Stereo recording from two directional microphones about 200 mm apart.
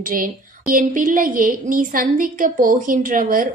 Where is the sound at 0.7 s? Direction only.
45° right (ahead or behind).